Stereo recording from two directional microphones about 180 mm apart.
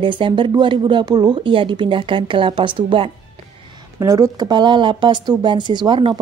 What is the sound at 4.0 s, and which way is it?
A woman's voice, 15° right (ahead or behind).